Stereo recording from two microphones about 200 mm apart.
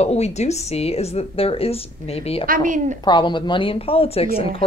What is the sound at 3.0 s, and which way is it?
A woman's voice, 25° left (ahead or behind).